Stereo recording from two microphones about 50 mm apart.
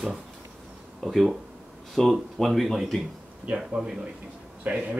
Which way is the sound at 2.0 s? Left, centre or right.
Centre.